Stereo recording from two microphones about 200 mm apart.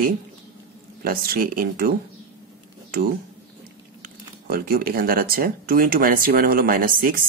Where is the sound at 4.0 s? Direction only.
50° right (ahead or behind).